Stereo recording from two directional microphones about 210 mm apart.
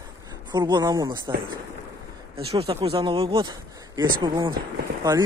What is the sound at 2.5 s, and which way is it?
A man's voice, 30° right (ahead or behind).